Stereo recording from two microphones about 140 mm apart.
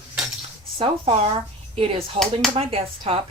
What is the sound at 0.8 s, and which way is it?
Speech, 40° right (ahead or behind).